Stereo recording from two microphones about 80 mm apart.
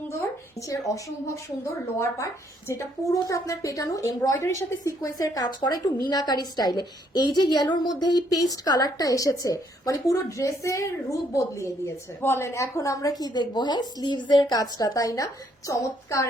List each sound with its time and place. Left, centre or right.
2.0 s a woman's voice: left